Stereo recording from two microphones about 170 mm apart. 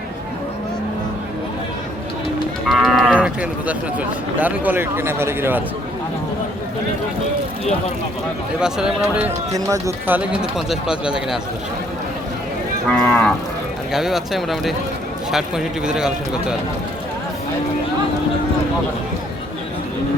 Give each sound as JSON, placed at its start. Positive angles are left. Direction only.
{"t": 2.6, "sound": "cattle", "side_deg": 0}
{"t": 3.2, "sound": "speech", "side_deg": -10}
{"t": 8.6, "sound": "speech", "side_deg": -5}
{"t": 9.5, "sound": "speech", "side_deg": -20}
{"t": 10.2, "sound": "speech", "side_deg": -5}
{"t": 12.9, "sound": "cattle", "side_deg": 15}
{"t": 13.9, "sound": "speech", "side_deg": 0}